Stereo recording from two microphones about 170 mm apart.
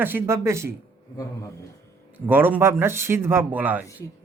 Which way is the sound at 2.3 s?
10° right (ahead or behind).